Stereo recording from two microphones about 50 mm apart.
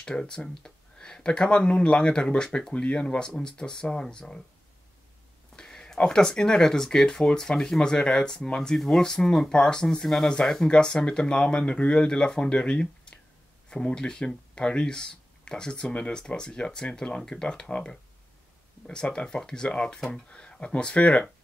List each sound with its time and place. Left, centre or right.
0.0 s speech: centre
5.6 s speech: centre